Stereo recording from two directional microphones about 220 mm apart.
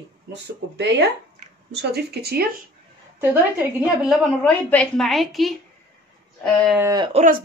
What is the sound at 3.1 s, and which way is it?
Speech, 10° right (ahead or behind).